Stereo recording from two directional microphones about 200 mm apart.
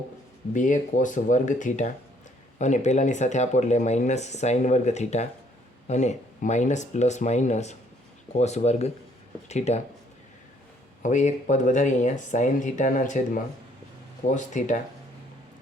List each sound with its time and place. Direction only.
0.5 s speech: 40° left (ahead or behind)
11.0 s speech: 35° left (ahead or behind)